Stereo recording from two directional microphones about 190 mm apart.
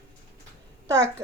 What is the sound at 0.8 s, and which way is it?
Speech, 15° right (ahead or behind).